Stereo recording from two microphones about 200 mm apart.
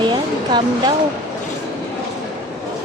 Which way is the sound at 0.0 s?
25° right (ahead or behind).